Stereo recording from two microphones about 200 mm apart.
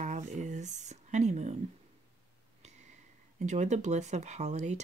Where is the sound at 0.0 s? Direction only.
35° right (ahead or behind).